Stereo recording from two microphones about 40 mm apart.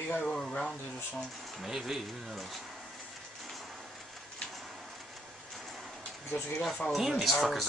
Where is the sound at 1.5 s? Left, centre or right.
Centre.